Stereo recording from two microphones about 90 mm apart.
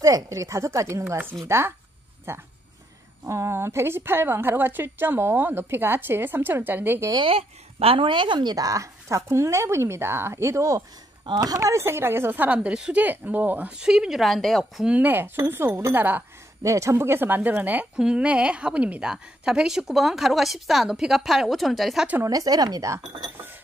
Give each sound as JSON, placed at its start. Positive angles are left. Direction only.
{"t": 0.0, "sound": "a woman's voice", "side_deg": -40}
{"t": 7.2, "sound": "speech", "side_deg": -90}
{"t": 11.2, "sound": "speech", "side_deg": -45}
{"t": 14.9, "sound": "a woman's voice", "side_deg": -20}
{"t": 16.6, "sound": "a woman's voice", "side_deg": -35}
{"t": 22.2, "sound": "speech", "side_deg": -40}